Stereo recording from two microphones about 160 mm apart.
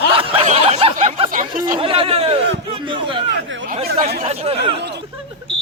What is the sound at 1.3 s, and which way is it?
Speech, 60° right (ahead or behind).